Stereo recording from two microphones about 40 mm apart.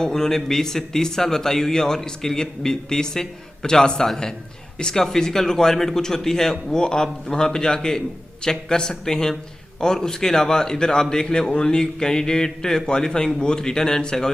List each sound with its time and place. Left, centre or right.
0.0 s a man's voice: centre